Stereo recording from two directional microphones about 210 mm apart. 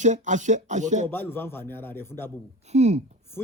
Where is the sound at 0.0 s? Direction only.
35° right (ahead or behind).